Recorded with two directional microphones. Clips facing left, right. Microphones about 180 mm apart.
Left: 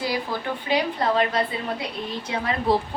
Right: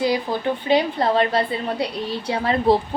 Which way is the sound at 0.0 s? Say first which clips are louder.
Right 6 dB; 20° right (ahead or behind).